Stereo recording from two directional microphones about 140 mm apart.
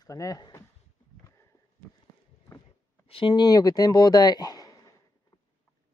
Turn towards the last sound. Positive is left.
turn(degrees=25)  # may be behind; listen again after turning